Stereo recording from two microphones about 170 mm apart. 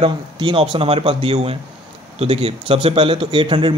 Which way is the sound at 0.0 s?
30° right (ahead or behind).